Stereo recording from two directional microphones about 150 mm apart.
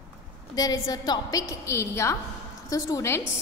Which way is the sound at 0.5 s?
25° left (ahead or behind).